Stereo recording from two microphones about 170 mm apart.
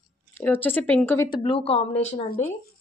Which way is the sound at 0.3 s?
10° left (ahead or behind).